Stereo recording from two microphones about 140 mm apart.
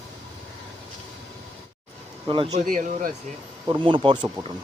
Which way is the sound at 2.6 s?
85° right.